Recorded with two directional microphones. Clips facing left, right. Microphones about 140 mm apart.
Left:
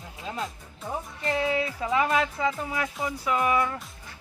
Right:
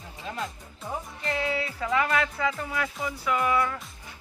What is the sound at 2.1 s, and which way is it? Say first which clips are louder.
Speech: left 1 dB; 10° left (ahead or behind).